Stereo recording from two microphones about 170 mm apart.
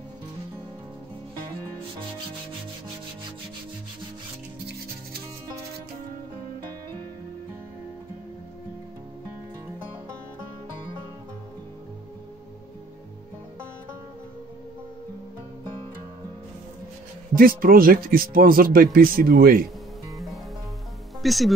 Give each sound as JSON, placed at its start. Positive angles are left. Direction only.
{"t": 17.4, "sound": "speech", "side_deg": -60}
{"t": 21.2, "sound": "speech", "side_deg": 0}